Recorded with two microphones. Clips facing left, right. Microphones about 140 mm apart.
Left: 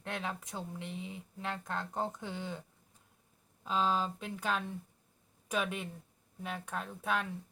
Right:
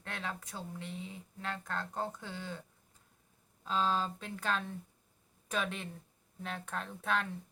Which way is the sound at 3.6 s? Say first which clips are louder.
Left 1 dB; 15° left (ahead or behind).